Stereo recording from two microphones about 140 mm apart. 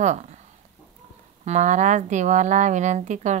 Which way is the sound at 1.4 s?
55° right (ahead or behind).